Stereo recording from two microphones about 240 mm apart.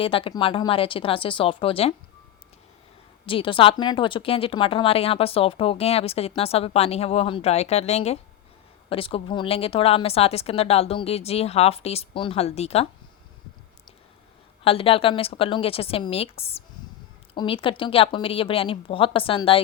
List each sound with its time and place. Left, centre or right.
0.0 s speech: left
3.2 s speech: left
14.6 s speech: left